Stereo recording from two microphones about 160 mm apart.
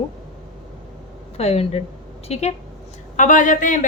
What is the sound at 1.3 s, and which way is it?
A woman's voice, 40° left (ahead or behind).